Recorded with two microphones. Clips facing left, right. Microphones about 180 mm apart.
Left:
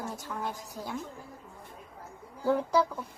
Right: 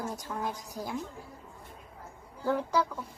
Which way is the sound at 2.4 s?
5° left (ahead or behind).